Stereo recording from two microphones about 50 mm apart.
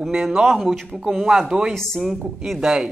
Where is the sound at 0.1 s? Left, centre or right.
Centre.